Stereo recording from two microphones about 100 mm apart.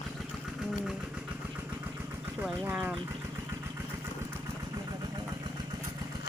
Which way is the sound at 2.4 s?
10° right (ahead or behind).